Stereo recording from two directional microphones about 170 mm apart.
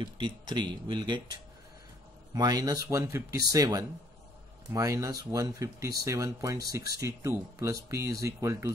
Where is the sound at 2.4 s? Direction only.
25° right (ahead or behind).